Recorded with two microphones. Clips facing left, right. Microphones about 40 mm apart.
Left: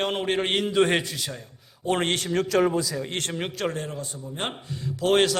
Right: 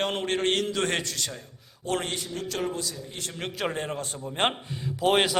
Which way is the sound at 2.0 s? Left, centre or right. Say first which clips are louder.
Left 7 dB; left.